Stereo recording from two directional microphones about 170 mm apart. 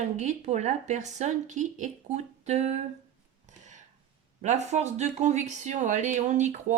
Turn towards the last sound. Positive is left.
turn(degrees=-45)  # may be behind; listen again after turning